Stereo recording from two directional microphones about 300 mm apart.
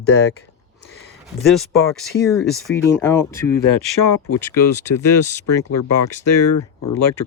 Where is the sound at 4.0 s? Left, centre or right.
Left.